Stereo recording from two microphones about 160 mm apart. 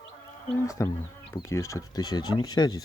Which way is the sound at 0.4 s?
15° left (ahead or behind).